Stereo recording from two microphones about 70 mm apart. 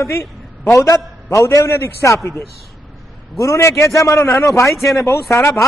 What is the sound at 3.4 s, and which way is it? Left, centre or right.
A man's voice, left.